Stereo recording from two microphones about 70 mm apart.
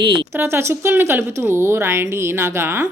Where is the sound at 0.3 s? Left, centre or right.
Right.